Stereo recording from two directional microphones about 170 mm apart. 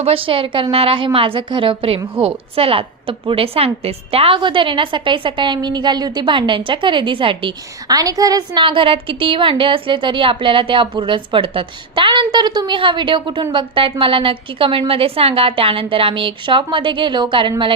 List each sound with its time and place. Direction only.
0.0 s a woman's voice: 35° right (ahead or behind)